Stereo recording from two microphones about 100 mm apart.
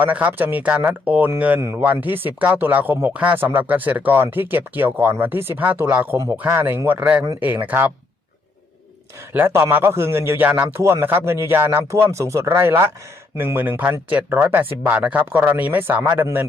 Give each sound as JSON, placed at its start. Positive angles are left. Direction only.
{"t": 0.0, "sound": "speech", "side_deg": -15}
{"t": 9.3, "sound": "speech", "side_deg": -20}